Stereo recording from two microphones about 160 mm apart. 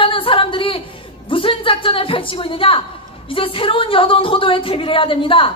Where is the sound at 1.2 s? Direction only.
35° left (ahead or behind).